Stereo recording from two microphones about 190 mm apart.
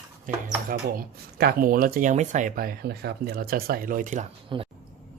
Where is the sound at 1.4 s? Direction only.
50° right (ahead or behind).